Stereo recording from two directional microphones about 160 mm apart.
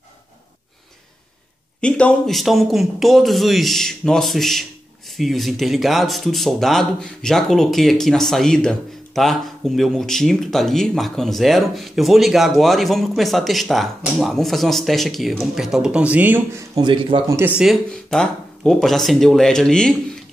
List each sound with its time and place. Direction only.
1.8 s speech: 5° left (ahead or behind); by 16.6 s 10° right (ahead or behind)
16.7 s speech: 30° right (ahead or behind)
17.6 s speech: centre (ahead or behind)